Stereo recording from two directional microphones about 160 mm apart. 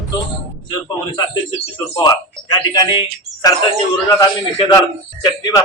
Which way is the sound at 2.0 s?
25° left (ahead or behind).